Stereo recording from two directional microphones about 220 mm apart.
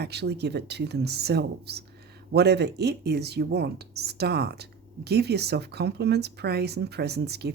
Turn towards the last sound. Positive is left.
turn(degrees=-50)  # may be behind; listen again after turning